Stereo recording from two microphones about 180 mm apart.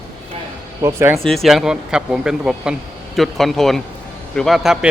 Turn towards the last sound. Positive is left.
turn(degrees=0)  # may be behind; listen again after turning